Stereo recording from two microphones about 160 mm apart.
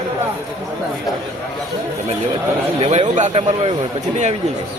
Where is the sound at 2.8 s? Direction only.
45° right (ahead or behind).